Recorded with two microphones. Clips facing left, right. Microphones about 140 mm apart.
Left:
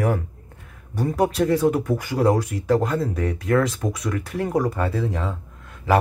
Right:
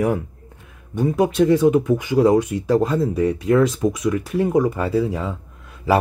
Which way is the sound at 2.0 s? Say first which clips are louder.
Right 3 dB; 25° right (ahead or behind).